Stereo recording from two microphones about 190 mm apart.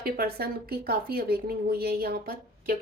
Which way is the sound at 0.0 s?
55° right (ahead or behind).